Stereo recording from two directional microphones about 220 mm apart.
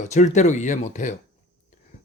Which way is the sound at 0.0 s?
35° left (ahead or behind).